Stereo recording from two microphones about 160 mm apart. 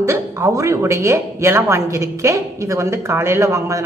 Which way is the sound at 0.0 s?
15° right (ahead or behind).